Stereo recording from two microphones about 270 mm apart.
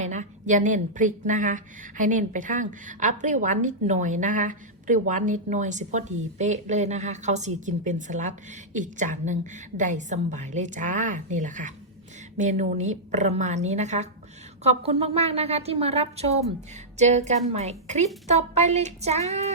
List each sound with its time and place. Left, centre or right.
0.0 s a woman's voice: right